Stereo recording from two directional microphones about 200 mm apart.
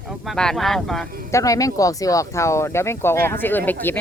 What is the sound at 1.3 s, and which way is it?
Speech, 15° left (ahead or behind).